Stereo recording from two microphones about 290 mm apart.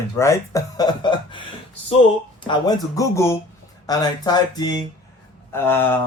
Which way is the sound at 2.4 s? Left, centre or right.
Centre.